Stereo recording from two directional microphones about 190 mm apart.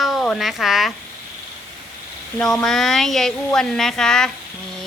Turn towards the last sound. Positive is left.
turn(degrees=5)  # may be behind; listen again after turning